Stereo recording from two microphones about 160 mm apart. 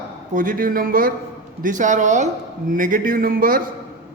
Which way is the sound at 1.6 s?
50° right (ahead or behind).